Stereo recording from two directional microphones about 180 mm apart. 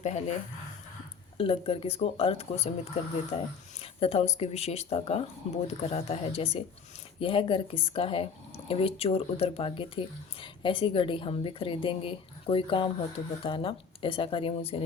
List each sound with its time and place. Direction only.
0.0 s speech: 40° left (ahead or behind)
1.4 s a woman's voice: 30° left (ahead or behind)